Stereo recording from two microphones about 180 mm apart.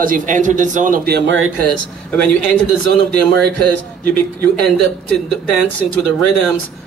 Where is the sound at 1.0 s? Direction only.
80° right.